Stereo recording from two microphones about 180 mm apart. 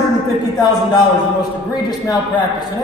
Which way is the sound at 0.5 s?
25° left (ahead or behind).